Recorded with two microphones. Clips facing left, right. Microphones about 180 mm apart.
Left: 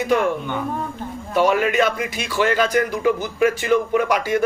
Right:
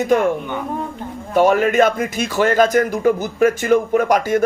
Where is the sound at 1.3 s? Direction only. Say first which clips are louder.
Right 4 dB; 45° right (ahead or behind).